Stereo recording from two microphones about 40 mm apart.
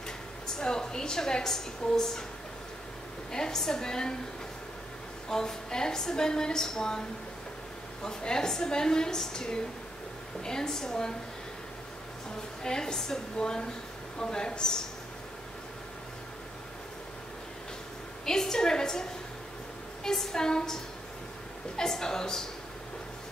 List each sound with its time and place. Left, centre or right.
0.6 s a woman's voice: centre
3.3 s a woman's voice: centre
5.3 s a woman's voice: centre
12.6 s a woman's voice: centre
18.2 s a woman's voice: centre